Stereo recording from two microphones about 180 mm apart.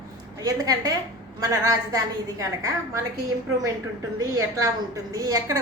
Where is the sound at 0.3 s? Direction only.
20° right (ahead or behind).